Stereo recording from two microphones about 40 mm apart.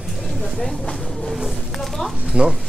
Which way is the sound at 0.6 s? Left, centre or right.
Centre.